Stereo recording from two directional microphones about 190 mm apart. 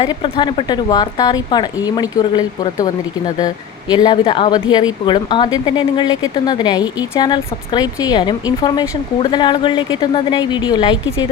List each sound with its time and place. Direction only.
0.0 s speech: 25° left (ahead or behind)